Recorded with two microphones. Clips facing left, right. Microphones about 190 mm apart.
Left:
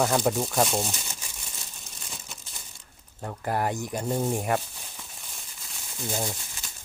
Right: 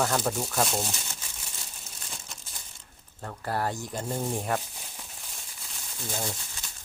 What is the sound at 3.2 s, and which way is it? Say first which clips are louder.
Speech: left 3 dB; 15° left (ahead or behind).